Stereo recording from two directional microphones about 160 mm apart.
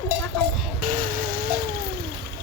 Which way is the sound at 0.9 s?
60° right (ahead or behind).